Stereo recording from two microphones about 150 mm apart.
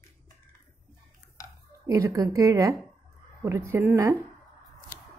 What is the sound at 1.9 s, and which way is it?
A woman's voice, 20° right (ahead or behind).